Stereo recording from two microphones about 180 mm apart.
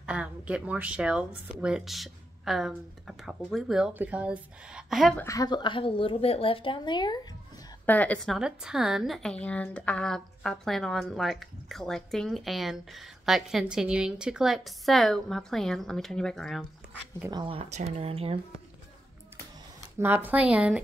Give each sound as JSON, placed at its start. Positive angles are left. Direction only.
{"t": 0.0, "sound": "speech", "side_deg": -5}
{"t": 5.2, "sound": "a woman's voice", "side_deg": 20}
{"t": 7.8, "sound": "speech", "side_deg": 10}
{"t": 17.3, "sound": "speech", "side_deg": -25}
{"t": 20.0, "sound": "a woman's voice", "side_deg": -10}